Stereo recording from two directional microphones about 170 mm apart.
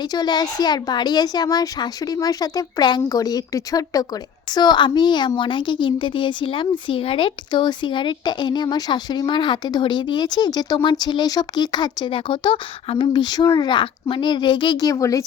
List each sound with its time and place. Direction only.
0.0 s a woman's voice: 25° left (ahead or behind)